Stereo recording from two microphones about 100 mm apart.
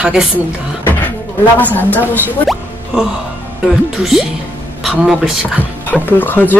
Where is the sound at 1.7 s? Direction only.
15° left (ahead or behind).